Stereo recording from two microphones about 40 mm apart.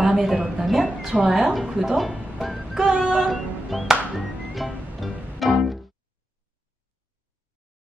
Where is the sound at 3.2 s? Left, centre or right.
Centre.